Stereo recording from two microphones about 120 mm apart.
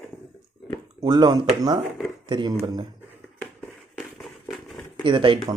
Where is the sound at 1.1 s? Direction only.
35° right (ahead or behind).